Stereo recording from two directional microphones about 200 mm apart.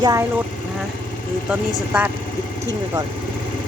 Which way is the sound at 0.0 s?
15° right (ahead or behind).